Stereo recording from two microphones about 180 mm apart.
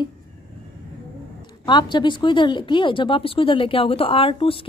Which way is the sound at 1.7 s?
25° left (ahead or behind).